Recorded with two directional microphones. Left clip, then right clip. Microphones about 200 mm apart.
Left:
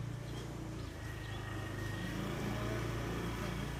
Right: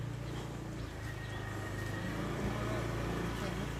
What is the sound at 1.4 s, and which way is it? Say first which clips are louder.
Vehicle: right 2 dB; 55° left (ahead or behind).